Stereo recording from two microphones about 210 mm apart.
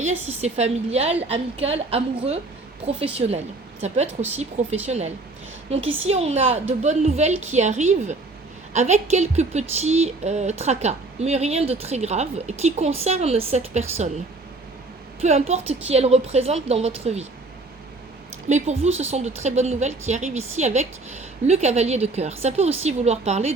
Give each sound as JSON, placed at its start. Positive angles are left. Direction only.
{"t": 0.0, "sound": "a woman's voice", "side_deg": -30}
{"t": 15.2, "sound": "a woman's voice", "side_deg": -30}
{"t": 18.4, "sound": "a woman's voice", "side_deg": -35}